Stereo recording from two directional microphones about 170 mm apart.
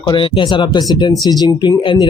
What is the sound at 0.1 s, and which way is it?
Speech, 30° left (ahead or behind).